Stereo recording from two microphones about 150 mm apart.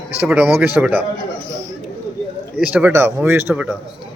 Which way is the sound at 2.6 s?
10° right (ahead or behind).